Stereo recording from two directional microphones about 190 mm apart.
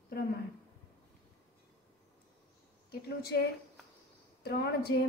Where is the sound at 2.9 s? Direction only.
55° left (ahead or behind).